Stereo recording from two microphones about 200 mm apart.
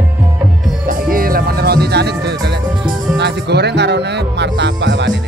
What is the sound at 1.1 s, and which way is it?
Music, 45° right (ahead or behind).